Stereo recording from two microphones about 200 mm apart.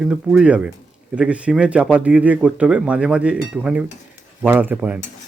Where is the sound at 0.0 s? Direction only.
5° right (ahead or behind).